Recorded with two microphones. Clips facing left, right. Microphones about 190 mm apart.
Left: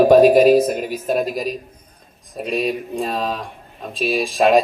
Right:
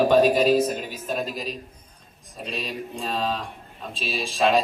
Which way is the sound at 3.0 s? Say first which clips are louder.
Left 1 dB; 40° left (ahead or behind).